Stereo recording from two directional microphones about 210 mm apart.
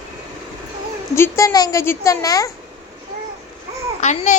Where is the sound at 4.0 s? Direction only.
35° left (ahead or behind).